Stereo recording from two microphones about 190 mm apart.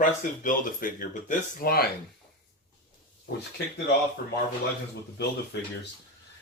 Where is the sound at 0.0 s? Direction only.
45° left (ahead or behind).